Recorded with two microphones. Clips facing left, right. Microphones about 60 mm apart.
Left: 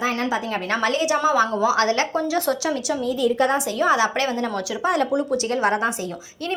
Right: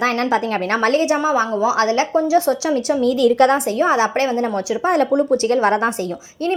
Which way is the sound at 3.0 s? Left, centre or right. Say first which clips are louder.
Right 7 dB; right.